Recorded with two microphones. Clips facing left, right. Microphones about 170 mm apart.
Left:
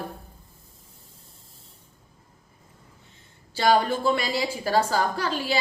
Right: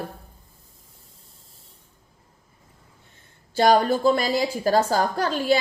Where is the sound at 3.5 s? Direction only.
45° right (ahead or behind).